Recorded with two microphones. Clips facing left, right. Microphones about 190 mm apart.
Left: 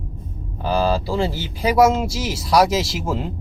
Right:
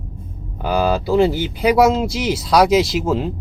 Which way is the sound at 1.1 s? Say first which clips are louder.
Right 7 dB; 20° right (ahead or behind).